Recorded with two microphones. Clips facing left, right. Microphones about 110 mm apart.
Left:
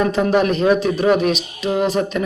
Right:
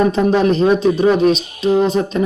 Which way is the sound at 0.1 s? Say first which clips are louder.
Right 2 dB; 25° right (ahead or behind).